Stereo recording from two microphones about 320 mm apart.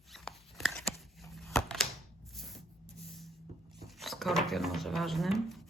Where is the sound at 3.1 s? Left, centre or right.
Centre.